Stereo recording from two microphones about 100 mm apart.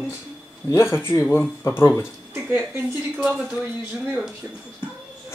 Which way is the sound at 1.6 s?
25° left (ahead or behind).